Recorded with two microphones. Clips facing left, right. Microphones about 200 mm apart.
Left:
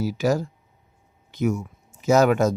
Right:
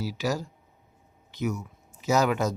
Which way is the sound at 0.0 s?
50° left (ahead or behind).